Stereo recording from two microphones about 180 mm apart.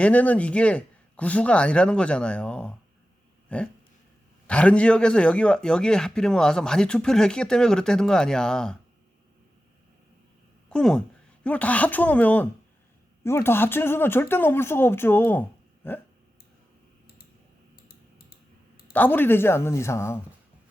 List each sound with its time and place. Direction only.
0.0 s a man's voice: 10° left (ahead or behind)
10.7 s a woman's voice: 5° left (ahead or behind)
17.8 s typing: 55° left (ahead or behind)
18.9 s speech: 10° left (ahead or behind)